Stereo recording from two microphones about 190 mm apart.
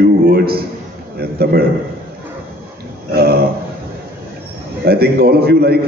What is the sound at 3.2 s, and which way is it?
Speech, 55° right (ahead or behind).